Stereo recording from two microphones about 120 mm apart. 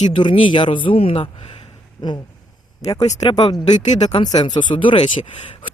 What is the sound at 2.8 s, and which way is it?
Speech, 50° left (ahead or behind).